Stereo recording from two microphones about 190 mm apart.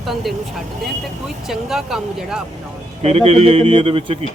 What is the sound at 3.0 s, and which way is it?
A man's voice, 35° right (ahead or behind).